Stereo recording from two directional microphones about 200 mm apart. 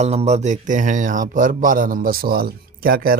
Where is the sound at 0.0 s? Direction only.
35° right (ahead or behind).